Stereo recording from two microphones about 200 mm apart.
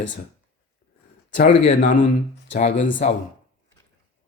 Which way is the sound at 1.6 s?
40° left (ahead or behind).